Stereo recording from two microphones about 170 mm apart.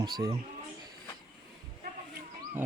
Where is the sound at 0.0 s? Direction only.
25° right (ahead or behind).